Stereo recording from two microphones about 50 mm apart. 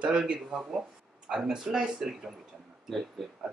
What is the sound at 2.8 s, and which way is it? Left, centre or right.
Speech, centre.